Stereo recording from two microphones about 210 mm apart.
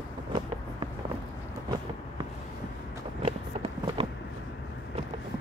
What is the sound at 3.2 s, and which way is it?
Run, 25° right (ahead or behind).